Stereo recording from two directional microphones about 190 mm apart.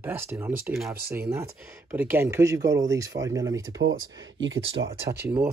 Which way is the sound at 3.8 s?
80° right.